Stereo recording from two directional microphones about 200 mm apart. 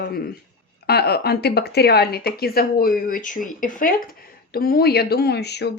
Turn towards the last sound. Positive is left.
turn(degrees=55)  # may be behind; listen again after turning